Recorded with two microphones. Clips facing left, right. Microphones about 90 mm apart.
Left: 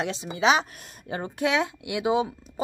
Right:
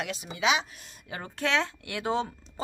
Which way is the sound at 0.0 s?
25° left (ahead or behind).